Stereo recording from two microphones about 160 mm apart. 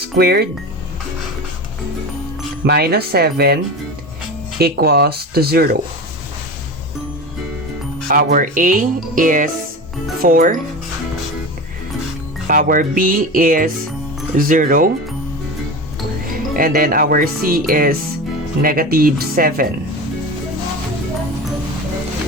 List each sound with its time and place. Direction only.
0.2 s speech: 85° right
2.6 s speech: 90° right; by 5.7 s 75° right (ahead or behind)
8.0 s speech: 60° right (ahead or behind)
12.5 s speech: 55° right (ahead or behind)
16.2 s speech: 60° right (ahead or behind)